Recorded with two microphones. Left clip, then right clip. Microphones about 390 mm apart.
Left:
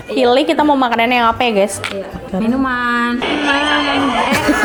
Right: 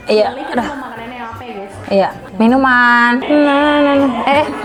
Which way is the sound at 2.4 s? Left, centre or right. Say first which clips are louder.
Right 7 dB; right.